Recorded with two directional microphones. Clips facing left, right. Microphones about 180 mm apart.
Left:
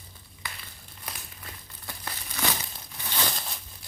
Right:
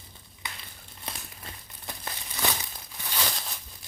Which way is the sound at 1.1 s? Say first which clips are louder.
Right 2 dB; 25° right (ahead or behind).